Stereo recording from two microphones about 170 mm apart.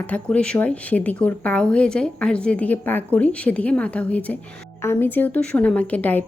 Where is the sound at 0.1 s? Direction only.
5° left (ahead or behind).